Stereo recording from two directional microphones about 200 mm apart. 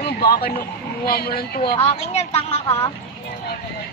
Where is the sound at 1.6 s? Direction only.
25° left (ahead or behind).